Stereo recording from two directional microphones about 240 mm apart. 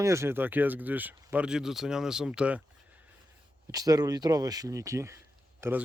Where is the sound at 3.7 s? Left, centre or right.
Centre.